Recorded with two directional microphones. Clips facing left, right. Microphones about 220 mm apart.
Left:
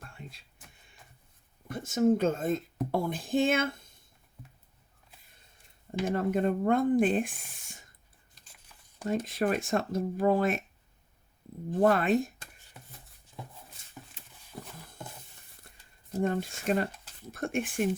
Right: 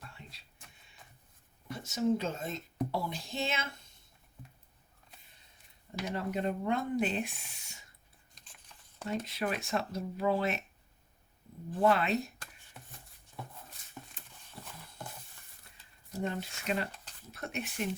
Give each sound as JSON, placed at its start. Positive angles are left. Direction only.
{"t": 0.0, "sound": "a sound", "side_deg": 50}
{"t": 1.6, "sound": "speech", "side_deg": 50}
{"t": 6.1, "sound": "speech", "side_deg": 50}
{"t": 8.4, "sound": "a sound", "side_deg": 5}
{"t": 9.0, "sound": "speech", "side_deg": 45}
{"t": 11.8, "sound": "speech", "side_deg": 45}
{"t": 16.1, "sound": "speech", "side_deg": 50}